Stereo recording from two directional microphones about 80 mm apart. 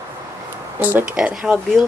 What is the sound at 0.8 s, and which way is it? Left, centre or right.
Speech, right.